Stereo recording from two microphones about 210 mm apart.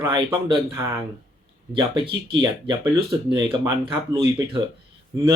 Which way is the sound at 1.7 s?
20° right (ahead or behind).